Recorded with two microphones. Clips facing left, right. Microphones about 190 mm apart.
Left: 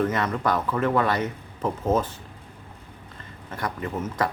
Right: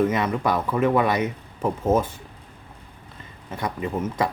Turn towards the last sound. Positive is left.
turn(degrees=-10)  # may be behind; listen again after turning